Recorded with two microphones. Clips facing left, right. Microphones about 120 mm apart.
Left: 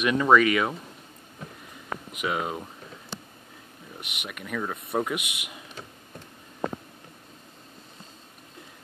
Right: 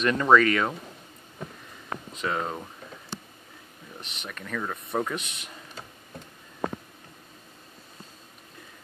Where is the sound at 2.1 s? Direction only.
10° left (ahead or behind).